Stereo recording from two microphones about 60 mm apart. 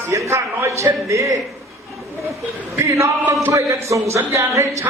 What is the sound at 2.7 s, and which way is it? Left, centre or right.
A man's voice, right.